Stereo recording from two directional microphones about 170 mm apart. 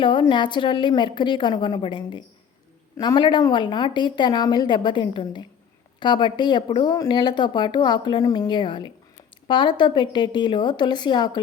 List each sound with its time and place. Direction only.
0.0 s speech: 30° left (ahead or behind)